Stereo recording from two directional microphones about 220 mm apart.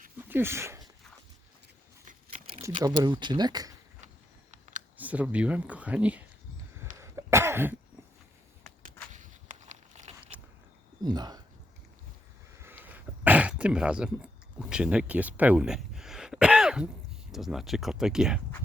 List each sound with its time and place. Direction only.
0.3 s speech: 10° right (ahead or behind)
2.8 s speech: 20° right (ahead or behind)
4.5 s a sound: 35° right (ahead or behind)
4.9 s speech: 5° right (ahead or behind)
7.0 s cough: 10° right (ahead or behind)
8.8 s walk: 35° right (ahead or behind)
11.0 s speech: 20° right (ahead or behind)
12.5 s throat clearing: 10° right (ahead or behind)
17.3 s speech: centre (ahead or behind)